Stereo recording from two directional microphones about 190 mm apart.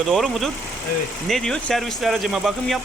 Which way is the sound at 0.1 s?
Centre (ahead or behind).